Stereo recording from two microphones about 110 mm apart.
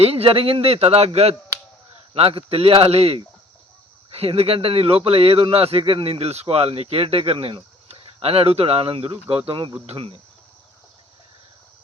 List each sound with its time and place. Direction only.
0.0 s speech: 60° right (ahead or behind)
9.5 s speech: 50° right (ahead or behind)
9.8 s speech: 65° right (ahead or behind)